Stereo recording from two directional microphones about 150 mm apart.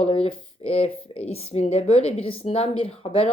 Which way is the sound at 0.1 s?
40° left (ahead or behind).